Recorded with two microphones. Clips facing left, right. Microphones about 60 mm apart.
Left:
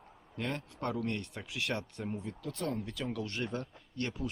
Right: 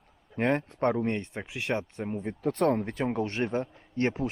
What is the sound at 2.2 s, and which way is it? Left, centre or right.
Speech, right.